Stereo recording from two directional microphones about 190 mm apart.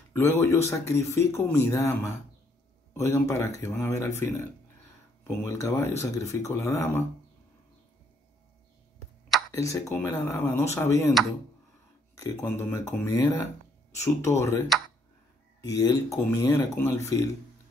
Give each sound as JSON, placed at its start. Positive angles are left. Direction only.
{"t": 0.1, "sound": "speech", "side_deg": 15}
{"t": 9.5, "sound": "speech", "side_deg": 15}
{"t": 12.2, "sound": "speech", "side_deg": 10}